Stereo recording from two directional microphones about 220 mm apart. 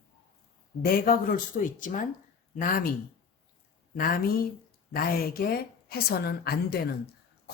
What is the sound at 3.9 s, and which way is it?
A woman's voice, 40° left (ahead or behind).